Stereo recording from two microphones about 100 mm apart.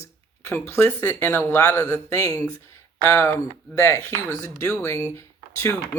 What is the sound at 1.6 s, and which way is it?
Speech, 35° left (ahead or behind).